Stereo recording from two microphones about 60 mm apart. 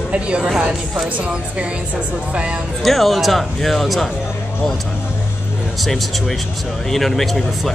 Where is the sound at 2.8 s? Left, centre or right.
Centre.